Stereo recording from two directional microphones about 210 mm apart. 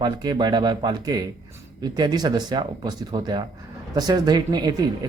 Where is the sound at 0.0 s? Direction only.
20° right (ahead or behind).